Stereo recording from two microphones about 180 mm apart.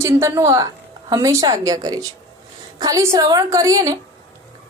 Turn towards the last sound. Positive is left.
turn(degrees=-20)  # may be behind; listen again after turning